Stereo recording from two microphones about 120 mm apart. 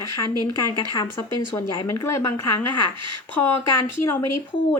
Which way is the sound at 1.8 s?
25° left (ahead or behind).